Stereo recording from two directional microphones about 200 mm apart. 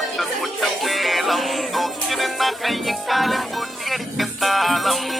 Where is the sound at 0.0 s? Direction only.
Centre (ahead or behind).